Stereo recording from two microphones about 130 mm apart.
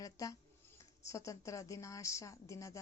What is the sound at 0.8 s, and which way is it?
A woman's voice, 25° left (ahead or behind).